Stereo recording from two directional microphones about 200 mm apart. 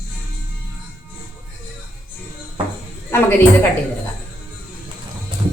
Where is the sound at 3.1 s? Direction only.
10° left (ahead or behind).